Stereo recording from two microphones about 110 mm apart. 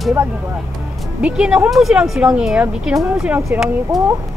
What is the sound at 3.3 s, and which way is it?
Speech, 25° right (ahead or behind).